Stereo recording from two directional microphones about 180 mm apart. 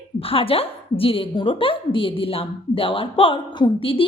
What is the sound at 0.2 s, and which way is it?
A woman's voice, 30° left (ahead or behind).